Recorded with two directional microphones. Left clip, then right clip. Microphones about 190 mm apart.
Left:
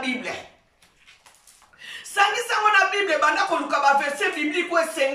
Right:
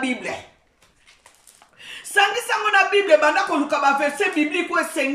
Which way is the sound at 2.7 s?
45° right (ahead or behind).